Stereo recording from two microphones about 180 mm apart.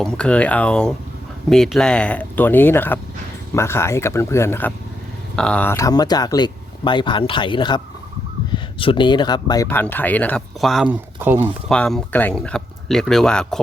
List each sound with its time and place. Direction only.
0.0 s speech: 5° left (ahead or behind)
11.2 s speech: 10° right (ahead or behind)
11.7 s speech: 5° left (ahead or behind)